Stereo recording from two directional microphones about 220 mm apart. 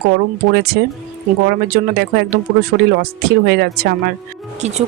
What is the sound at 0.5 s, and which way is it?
A woman's voice, 45° right (ahead or behind).